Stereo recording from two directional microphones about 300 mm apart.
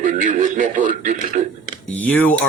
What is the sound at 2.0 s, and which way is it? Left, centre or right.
Speech, centre.